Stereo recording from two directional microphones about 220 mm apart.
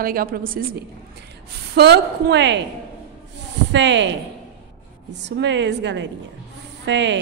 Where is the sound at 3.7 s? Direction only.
55° right (ahead or behind).